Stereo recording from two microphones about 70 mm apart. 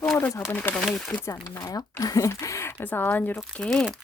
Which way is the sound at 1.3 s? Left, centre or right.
Left.